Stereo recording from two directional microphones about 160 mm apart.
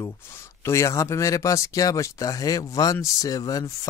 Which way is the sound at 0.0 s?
15° left (ahead or behind).